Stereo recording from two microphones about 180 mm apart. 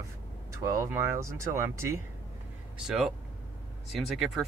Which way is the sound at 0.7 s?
15° right (ahead or behind).